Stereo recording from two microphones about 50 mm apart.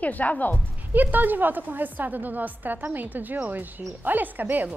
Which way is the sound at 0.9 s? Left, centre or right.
Right.